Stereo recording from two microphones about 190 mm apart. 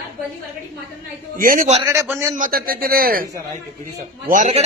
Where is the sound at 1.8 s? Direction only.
15° right (ahead or behind).